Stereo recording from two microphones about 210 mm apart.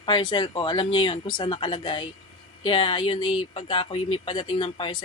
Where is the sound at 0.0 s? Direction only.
20° left (ahead or behind).